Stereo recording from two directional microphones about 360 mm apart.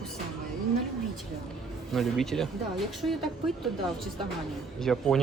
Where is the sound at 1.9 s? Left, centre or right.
Centre.